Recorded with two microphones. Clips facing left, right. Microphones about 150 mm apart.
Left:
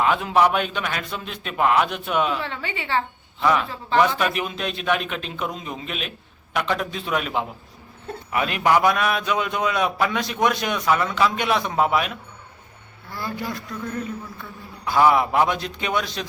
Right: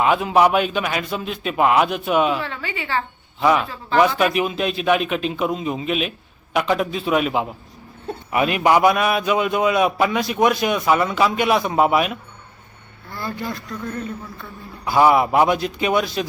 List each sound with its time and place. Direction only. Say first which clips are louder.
0.0 s a man's voice: right 3 dB; 10° right (ahead or behind)
2.4 s a woman's voice: right 1 dB; 25° left (ahead or behind)
3.4 s a man's voice: right 3 dB; 10° right (ahead or behind)
13.1 s speech: right 2 dB; 10° left (ahead or behind)
14.8 s a man's voice: right 2 dB; 10° right (ahead or behind)